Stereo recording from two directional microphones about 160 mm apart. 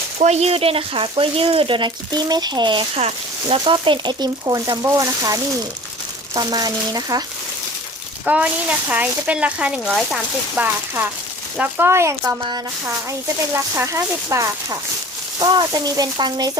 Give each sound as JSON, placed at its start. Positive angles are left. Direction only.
{"t": 0.2, "sound": "speech", "side_deg": -45}
{"t": 8.2, "sound": "speech", "side_deg": -5}
{"t": 10.6, "sound": "speech", "side_deg": -15}